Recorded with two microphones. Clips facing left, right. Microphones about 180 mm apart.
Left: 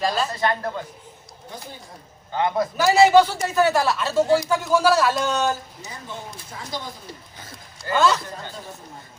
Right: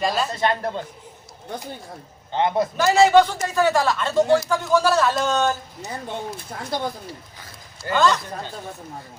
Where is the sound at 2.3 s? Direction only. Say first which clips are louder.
Right 2 dB; 25° right (ahead or behind).